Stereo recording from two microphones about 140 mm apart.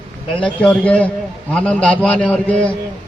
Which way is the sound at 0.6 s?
5° left (ahead or behind).